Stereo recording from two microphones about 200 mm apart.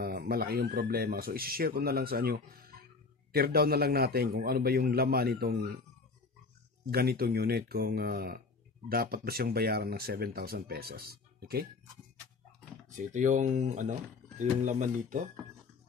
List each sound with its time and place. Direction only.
0.0 s speech: 50° right (ahead or behind)
6.9 s speech: 50° right (ahead or behind)
12.9 s speech: 40° right (ahead or behind)